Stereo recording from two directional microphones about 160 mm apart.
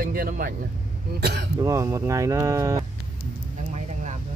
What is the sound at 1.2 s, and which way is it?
Speech, 90° right.